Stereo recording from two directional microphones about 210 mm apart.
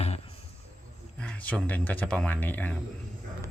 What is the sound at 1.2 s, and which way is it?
Speech, 5° left (ahead or behind).